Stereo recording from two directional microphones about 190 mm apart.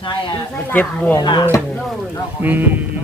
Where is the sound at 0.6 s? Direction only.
10° left (ahead or behind).